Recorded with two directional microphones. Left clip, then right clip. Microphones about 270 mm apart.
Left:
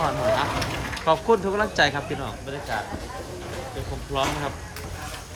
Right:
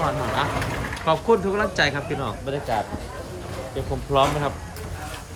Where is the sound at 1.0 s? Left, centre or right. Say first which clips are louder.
Right 1 dB; centre.